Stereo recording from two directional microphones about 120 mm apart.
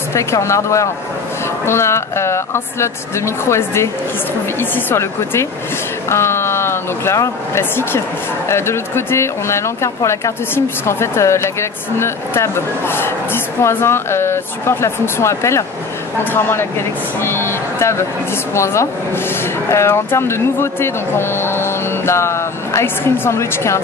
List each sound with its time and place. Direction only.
0.1 s speech: 25° left (ahead or behind)